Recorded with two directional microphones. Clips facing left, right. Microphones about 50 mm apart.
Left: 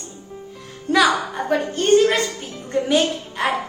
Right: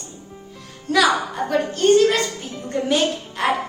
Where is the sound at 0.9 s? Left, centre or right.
Centre.